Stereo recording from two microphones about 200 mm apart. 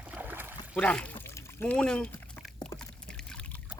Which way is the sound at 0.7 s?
5° left (ahead or behind).